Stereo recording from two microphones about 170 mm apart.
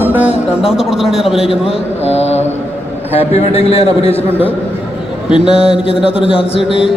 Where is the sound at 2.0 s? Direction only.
40° left (ahead or behind).